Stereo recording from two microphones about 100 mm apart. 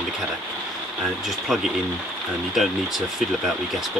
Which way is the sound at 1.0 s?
Centre (ahead or behind).